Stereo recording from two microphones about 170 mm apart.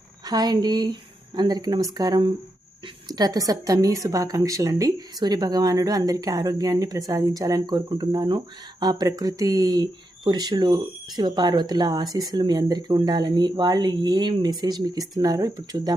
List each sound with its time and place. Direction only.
0.3 s a woman's voice: 25° right (ahead or behind)